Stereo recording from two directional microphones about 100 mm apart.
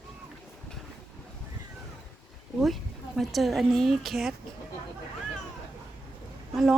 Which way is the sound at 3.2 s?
Centre (ahead or behind).